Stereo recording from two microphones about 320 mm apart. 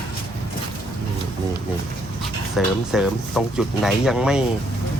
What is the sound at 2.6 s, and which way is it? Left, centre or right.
Speech, centre.